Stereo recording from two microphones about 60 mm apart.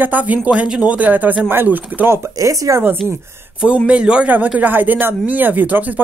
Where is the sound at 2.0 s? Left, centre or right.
Right.